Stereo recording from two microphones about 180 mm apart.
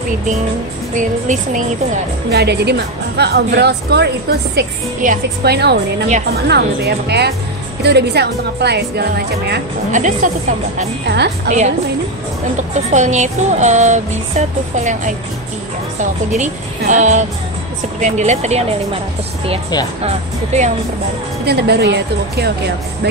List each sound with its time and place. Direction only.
0.9 s a woman's voice: 45° right (ahead or behind)
2.3 s a woman's voice: 65° right (ahead or behind)
5.0 s a woman's voice: 45° right (ahead or behind)
5.4 s a woman's voice: 65° right (ahead or behind)
9.9 s a woman's voice: 45° right (ahead or behind)
11.1 s a woman's voice: 70° right (ahead or behind)
11.4 s music: 40° right (ahead or behind)
12.9 s music: 40° right (ahead or behind)
16.9 s a woman's voice: 40° right (ahead or behind)
18.0 s music: 40° right (ahead or behind)
20.5 s music: 40° right (ahead or behind)
21.5 s a woman's voice: 65° right (ahead or behind)